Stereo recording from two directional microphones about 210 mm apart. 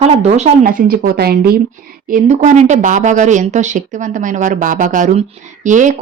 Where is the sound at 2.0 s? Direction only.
35° right (ahead or behind).